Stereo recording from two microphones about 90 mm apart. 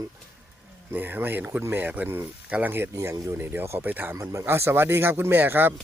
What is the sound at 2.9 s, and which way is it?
Speech, 35° right (ahead or behind).